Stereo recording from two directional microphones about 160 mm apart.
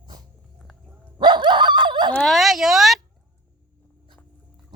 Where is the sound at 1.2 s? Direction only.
30° right (ahead or behind).